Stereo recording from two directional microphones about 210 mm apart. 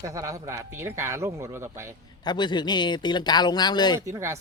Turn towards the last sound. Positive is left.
turn(degrees=-15)  # may be behind; listen again after turning